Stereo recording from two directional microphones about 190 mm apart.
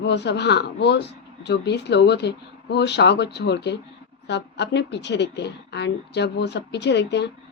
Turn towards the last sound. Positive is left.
turn(degrees=65)  # may be behind; listen again after turning